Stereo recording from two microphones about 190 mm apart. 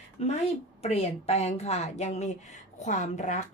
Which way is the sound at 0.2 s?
35° left (ahead or behind).